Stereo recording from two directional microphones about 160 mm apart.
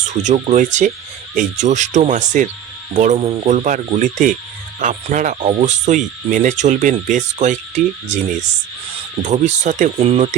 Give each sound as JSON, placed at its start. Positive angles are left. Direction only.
{"t": 0.1, "sound": "speech", "side_deg": -45}
{"t": 3.2, "sound": "speech", "side_deg": -35}